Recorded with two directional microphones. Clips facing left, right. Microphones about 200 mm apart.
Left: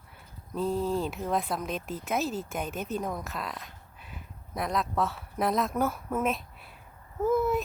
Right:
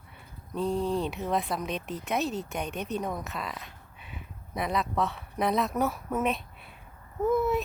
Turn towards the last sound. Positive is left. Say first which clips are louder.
# even
turn(degrees=0)  # may be behind; listen again after turning